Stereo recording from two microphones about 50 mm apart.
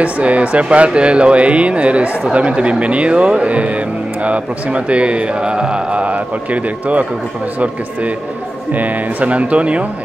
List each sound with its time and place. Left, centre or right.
0.0 s speech: right
8.7 s speech: right